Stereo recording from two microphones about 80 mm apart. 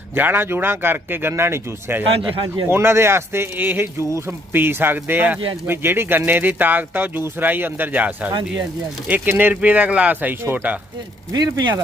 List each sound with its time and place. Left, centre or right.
0.1 s speech: right
4.5 s speech: right
11.3 s speech: right